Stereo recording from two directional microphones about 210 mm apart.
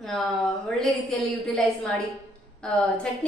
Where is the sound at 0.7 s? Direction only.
Centre (ahead or behind).